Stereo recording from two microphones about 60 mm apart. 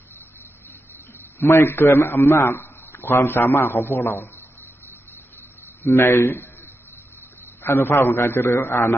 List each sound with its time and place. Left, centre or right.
1.4 s a man's voice: left
5.8 s a man's voice: left